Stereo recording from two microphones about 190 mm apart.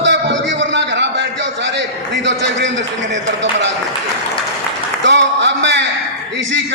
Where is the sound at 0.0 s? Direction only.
70° right (ahead or behind).